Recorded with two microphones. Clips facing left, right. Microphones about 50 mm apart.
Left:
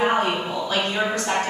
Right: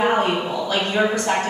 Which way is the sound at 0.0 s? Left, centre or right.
Centre.